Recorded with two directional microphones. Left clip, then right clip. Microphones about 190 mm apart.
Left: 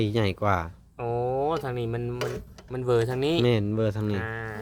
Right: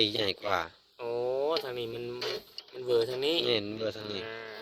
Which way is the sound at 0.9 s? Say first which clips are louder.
Left 4 dB; 60° left (ahead or behind).